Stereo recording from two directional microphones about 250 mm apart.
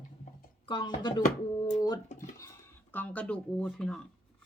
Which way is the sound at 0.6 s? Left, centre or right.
Centre.